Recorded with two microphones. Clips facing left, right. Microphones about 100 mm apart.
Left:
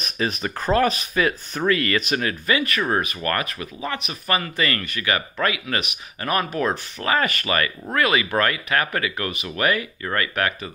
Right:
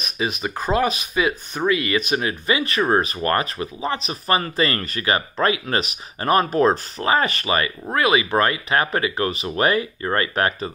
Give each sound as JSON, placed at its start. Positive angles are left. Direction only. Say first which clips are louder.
{"t": 0.2, "sound": "speech", "louder": "right 1 dB", "side_deg": -15}